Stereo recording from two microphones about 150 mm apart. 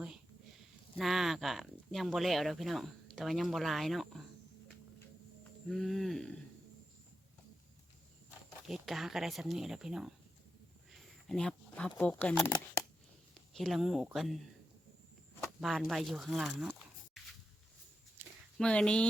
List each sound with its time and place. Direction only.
0.9 s speech: centre (ahead or behind)
5.4 s music: centre (ahead or behind)
8.6 s speech: centre (ahead or behind)
13.5 s speech: centre (ahead or behind)
15.6 s speech: centre (ahead or behind)
18.2 s a sound: 15° right (ahead or behind)
18.5 s speech: 5° left (ahead or behind)